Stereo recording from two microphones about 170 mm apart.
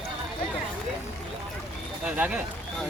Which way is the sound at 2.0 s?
5° right (ahead or behind).